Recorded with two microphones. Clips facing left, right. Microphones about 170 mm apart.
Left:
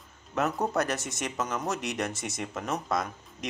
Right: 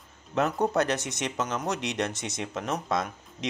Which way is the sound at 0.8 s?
20° right (ahead or behind).